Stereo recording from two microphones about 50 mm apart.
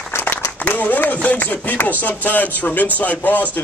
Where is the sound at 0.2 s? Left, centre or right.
Left.